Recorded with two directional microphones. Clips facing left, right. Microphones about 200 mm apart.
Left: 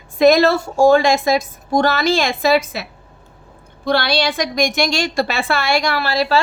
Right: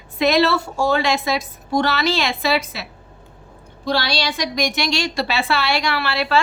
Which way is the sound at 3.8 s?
55° left (ahead or behind).